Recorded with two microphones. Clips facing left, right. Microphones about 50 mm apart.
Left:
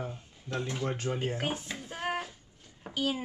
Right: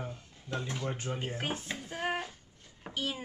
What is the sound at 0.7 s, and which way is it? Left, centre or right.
Speech, centre.